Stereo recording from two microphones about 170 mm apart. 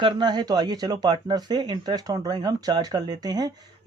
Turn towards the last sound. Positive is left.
turn(degrees=-20)  # may be behind; listen again after turning